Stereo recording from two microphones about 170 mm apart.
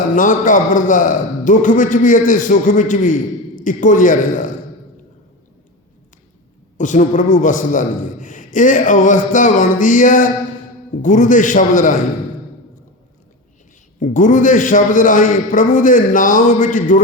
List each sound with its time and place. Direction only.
0.1 s a man's voice: 50° left (ahead or behind)
6.7 s a man's voice: 45° left (ahead or behind)
14.0 s a man's voice: 50° left (ahead or behind)